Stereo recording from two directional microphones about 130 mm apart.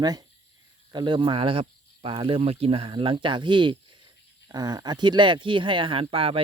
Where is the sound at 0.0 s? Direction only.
30° right (ahead or behind).